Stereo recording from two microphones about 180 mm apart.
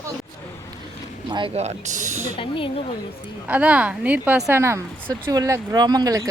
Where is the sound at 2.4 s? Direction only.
30° left (ahead or behind).